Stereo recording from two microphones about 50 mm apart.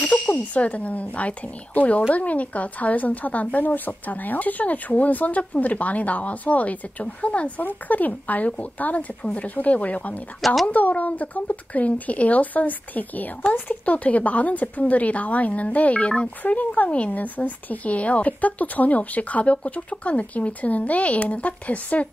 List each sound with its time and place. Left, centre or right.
0.0 s speech: left
10.4 s speech: centre
10.7 s speech: left